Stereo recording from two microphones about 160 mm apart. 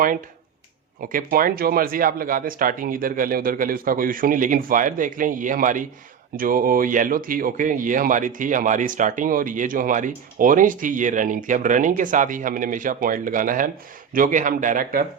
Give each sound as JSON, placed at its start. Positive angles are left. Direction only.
{"t": 1.0, "sound": "speech", "side_deg": -65}